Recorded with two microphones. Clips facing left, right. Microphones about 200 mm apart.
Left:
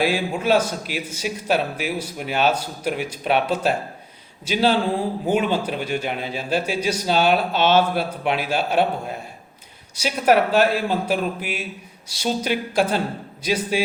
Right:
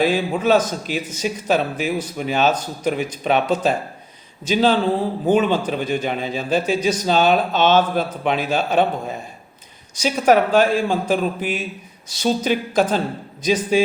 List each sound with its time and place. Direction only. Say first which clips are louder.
0.0 s speech: right 3 dB; 10° left (ahead or behind)
10.7 s a man's voice: right 3 dB; 45° right (ahead or behind)
11.0 s speech: right 3 dB; 10° left (ahead or behind)